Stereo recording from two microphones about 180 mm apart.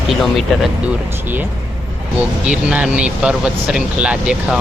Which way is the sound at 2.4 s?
5° right (ahead or behind).